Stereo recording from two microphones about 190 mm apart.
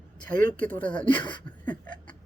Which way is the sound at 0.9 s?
25° left (ahead or behind).